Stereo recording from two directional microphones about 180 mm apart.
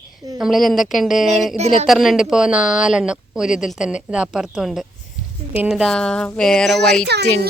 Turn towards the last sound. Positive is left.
turn(degrees=-65)  # may be behind; listen again after turning